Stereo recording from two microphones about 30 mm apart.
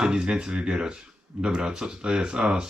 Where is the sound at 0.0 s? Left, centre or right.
Right.